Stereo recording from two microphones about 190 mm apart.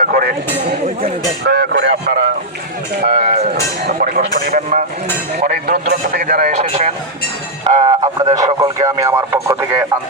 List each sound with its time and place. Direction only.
0.0 s a man's voice: 50° right (ahead or behind)
1.5 s speech: 65° right (ahead or behind)
3.0 s a man's voice: 50° right (ahead or behind)
3.2 s speech: 35° right (ahead or behind)
3.5 s a man's voice: 55° right (ahead or behind); by 6.9 s 35° right (ahead or behind)
7.9 s speech: 20° right (ahead or behind)